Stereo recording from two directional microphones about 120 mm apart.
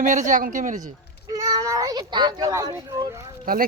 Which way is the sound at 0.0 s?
90° right.